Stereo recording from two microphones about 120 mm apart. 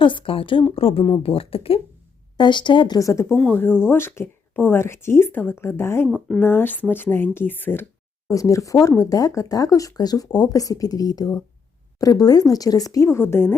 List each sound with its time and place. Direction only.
0.0 s a woman's voice: 45° left (ahead or behind)
2.4 s speech: 40° left (ahead or behind); by 3.3 s 25° left (ahead or behind)
3.3 s speech: 15° left (ahead or behind)
6.1 s speech: 5° left (ahead or behind)
6.4 s speech: 20° left (ahead or behind)
8.3 s speech: 25° left (ahead or behind)